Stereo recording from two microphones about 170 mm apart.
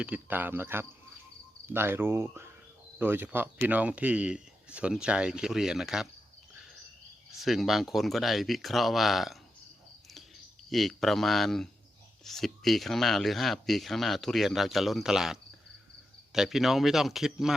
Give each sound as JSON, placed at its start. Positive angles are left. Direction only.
{"t": 0.0, "sound": "speech", "side_deg": -10}
{"t": 7.3, "sound": "speech", "side_deg": 0}
{"t": 10.7, "sound": "speech", "side_deg": 0}